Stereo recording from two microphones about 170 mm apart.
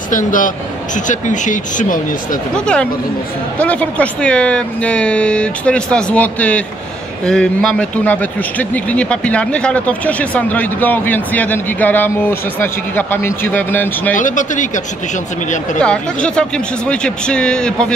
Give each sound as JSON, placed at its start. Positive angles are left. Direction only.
{"t": 0.1, "sound": "speech", "side_deg": 50}
{"t": 2.5, "sound": "a man's voice", "side_deg": 5}
{"t": 14.1, "sound": "speech", "side_deg": 50}
{"t": 15.8, "sound": "speech", "side_deg": 5}